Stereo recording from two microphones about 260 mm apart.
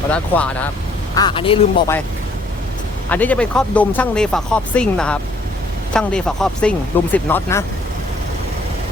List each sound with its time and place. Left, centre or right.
0.1 s speech: centre
1.1 s a woman's voice: centre
3.1 s speech: centre